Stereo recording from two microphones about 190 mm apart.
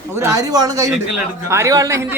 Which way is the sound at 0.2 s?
15° right (ahead or behind).